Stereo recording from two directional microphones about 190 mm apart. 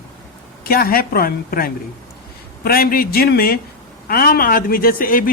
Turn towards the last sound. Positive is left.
turn(degrees=50)  # may be behind; listen again after turning